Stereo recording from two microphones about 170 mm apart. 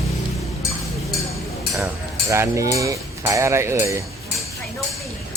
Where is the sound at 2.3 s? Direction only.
15° right (ahead or behind).